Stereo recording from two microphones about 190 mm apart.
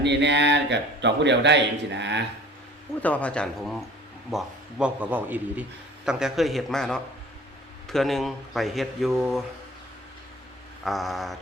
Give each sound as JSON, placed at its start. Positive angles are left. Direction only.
{"t": 0.0, "sound": "speech", "side_deg": -65}
{"t": 3.0, "sound": "a man's voice", "side_deg": 5}
{"t": 10.8, "sound": "speech", "side_deg": 0}